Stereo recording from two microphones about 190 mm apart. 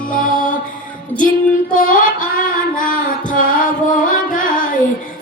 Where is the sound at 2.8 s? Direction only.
45° left (ahead or behind).